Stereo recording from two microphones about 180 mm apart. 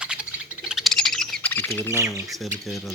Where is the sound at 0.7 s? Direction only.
Centre (ahead or behind).